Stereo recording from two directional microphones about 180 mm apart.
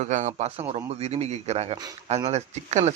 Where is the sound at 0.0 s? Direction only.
40° right (ahead or behind).